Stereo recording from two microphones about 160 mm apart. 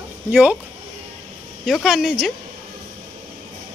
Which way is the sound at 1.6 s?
Centre (ahead or behind).